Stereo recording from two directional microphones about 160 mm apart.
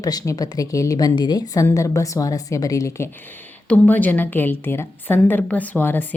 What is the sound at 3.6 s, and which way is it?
A woman's voice, 10° left (ahead or behind).